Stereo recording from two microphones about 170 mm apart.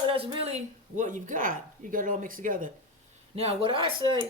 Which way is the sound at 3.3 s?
35° right (ahead or behind).